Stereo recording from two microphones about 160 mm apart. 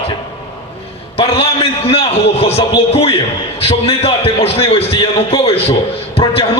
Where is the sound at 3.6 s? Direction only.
40° left (ahead or behind).